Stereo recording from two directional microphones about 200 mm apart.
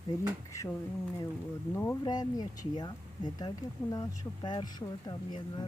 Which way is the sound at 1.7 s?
15° left (ahead or behind).